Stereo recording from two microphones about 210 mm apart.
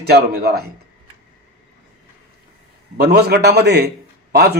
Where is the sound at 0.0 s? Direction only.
50° right (ahead or behind).